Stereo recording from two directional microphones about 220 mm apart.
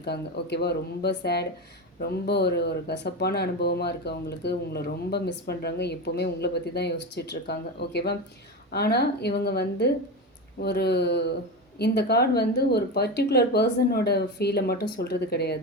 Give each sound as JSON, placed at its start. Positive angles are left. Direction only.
{"t": 0.0, "sound": "speech", "side_deg": 50}